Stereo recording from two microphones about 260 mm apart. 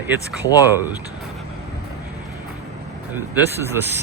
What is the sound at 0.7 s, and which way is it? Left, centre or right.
Speech, centre.